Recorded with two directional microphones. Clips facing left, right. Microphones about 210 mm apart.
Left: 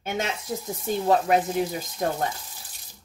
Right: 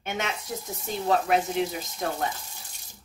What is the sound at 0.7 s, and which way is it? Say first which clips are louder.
Speech: left 3 dB; 40° left (ahead or behind).